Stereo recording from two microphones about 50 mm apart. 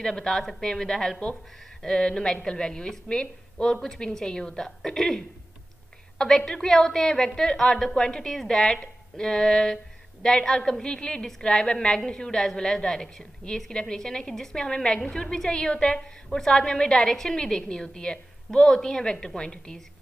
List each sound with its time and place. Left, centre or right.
0.0 s speech: centre